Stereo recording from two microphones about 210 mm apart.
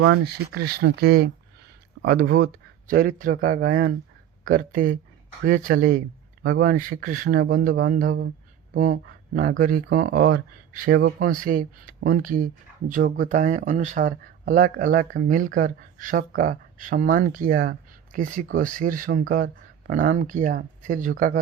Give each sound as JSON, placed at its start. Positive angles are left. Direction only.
{"t": 0.5, "sound": "speech", "side_deg": -50}